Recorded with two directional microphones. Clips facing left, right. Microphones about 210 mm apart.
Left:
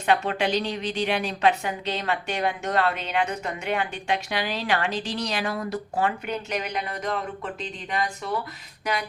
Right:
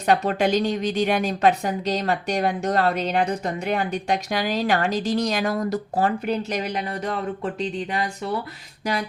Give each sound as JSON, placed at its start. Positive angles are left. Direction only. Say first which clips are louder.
{"t": 0.0, "sound": "a woman's voice", "louder": "right 3 dB", "side_deg": -40}